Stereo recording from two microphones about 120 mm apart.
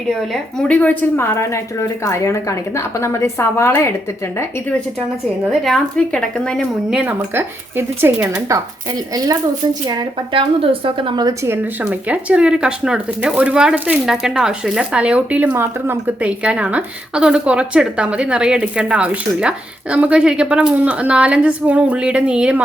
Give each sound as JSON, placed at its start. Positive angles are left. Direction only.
{"t": 0.3, "sound": "a woman's voice", "side_deg": 10}
{"t": 5.5, "sound": "a woman's voice", "side_deg": 5}
{"t": 6.9, "sound": "speech", "side_deg": -15}
{"t": 10.6, "sound": "a woman's voice", "side_deg": -50}
{"t": 11.4, "sound": "speech", "side_deg": -15}